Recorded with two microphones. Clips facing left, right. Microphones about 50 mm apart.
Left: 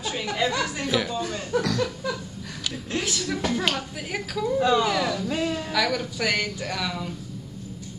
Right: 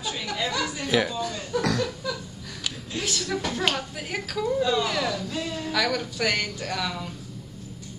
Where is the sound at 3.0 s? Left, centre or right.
Centre.